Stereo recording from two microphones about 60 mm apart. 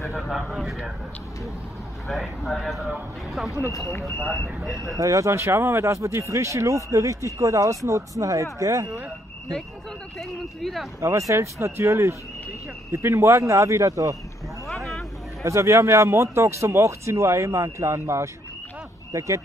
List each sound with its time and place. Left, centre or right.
0.1 s speech: centre
2.0 s speech: centre
4.2 s speech: left
4.6 s speech: centre
4.9 s speech: right
5.3 s speech: right
10.1 s speech: centre
11.0 s speech: right
14.7 s vehicle: centre
15.4 s speech: right